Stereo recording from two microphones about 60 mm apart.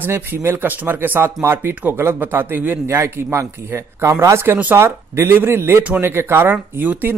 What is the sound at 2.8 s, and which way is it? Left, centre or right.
Speech, right.